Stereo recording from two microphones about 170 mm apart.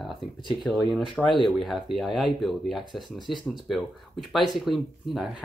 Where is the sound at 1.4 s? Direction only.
Centre (ahead or behind).